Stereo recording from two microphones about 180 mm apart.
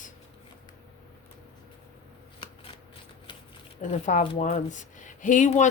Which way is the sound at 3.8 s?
45° left (ahead or behind).